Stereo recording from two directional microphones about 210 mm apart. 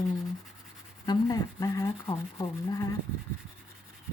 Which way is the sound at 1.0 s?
15° left (ahead or behind).